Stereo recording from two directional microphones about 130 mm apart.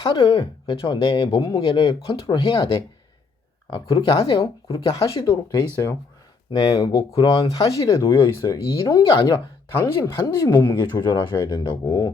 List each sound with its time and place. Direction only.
0.0 s speech: 35° left (ahead or behind)
3.7 s speech: 30° left (ahead or behind)
10.9 s speech: 30° left (ahead or behind)